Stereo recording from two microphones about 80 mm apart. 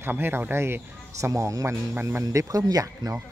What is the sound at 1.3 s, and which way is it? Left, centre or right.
Speech, right.